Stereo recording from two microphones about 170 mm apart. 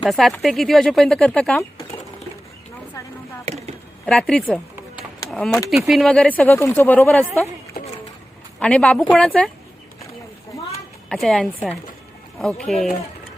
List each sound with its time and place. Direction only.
0.0 s speech: centre (ahead or behind)
3.4 s a sound: 40° right (ahead or behind)
4.0 s speech: 5° left (ahead or behind)
8.5 s speech: 5° left (ahead or behind)
11.1 s speech: 5° left (ahead or behind)